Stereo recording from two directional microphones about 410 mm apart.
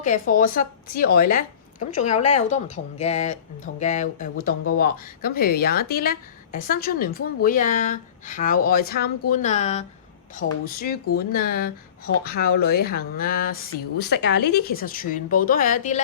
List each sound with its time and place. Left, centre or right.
0.0 s speech: centre